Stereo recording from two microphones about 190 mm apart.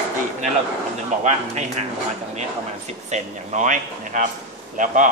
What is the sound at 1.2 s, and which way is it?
Speech, 35° right (ahead or behind).